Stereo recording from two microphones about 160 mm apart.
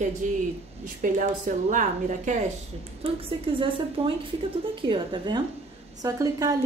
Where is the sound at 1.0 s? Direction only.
55° right (ahead or behind).